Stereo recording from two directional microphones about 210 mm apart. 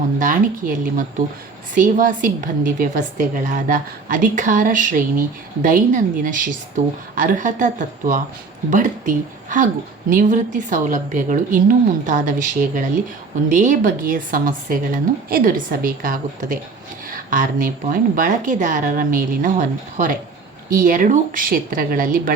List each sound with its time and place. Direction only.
0.2 s a woman's voice: 40° right (ahead or behind)